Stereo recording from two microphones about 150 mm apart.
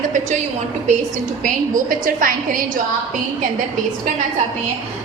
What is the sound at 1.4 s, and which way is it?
A woman's voice, 65° right (ahead or behind).